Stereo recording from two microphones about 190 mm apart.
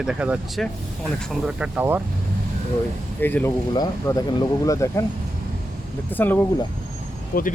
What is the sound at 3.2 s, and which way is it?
Speech, 10° left (ahead or behind).